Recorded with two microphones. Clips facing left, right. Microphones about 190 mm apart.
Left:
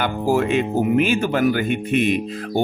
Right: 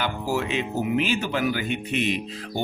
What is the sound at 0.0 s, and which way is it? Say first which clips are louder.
Speech: left 7 dB; 50° left (ahead or behind).